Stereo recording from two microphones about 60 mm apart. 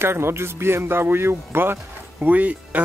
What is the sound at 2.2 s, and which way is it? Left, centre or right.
Speech, right.